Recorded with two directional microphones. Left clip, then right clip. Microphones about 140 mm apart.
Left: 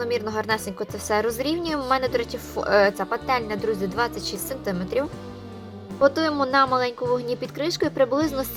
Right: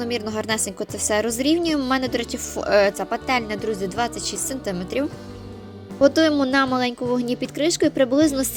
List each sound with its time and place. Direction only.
0.0 s a woman's voice: 40° right (ahead or behind)